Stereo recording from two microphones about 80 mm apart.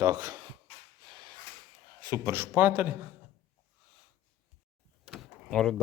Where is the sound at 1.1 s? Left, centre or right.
Right.